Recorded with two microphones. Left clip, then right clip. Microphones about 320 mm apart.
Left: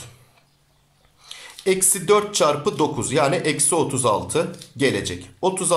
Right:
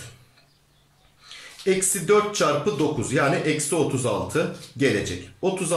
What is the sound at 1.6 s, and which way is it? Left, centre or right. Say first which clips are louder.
Speech: left 2 dB; centre.